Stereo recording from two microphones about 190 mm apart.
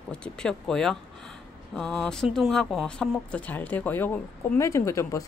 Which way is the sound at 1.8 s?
5° left (ahead or behind).